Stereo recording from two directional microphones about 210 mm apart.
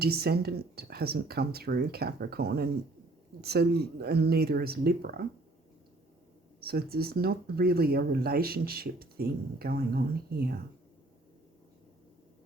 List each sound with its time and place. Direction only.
0.0 s speech: 50° right (ahead or behind)
6.6 s speech: 45° right (ahead or behind)